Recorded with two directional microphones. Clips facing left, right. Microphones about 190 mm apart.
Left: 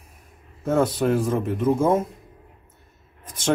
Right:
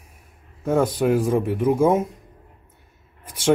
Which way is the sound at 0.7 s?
10° right (ahead or behind).